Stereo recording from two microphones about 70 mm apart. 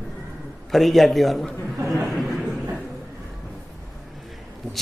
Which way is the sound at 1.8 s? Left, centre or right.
Centre.